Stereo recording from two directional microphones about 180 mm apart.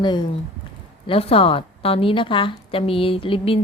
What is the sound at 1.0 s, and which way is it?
A woman's voice, 30° left (ahead or behind).